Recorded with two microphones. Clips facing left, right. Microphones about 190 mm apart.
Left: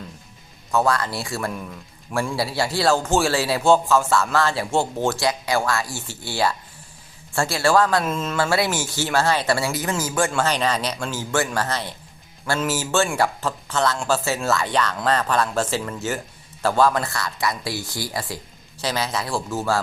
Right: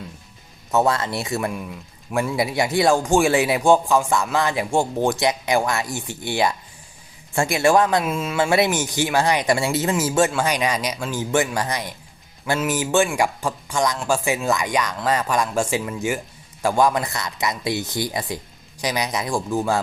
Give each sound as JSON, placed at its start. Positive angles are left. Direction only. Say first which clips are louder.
{"t": 0.7, "sound": "speech", "louder": "right 1 dB", "side_deg": -20}
{"t": 8.4, "sound": "speech", "louder": "right 4 dB", "side_deg": -20}
{"t": 10.3, "sound": "speech", "louder": "even", "side_deg": -10}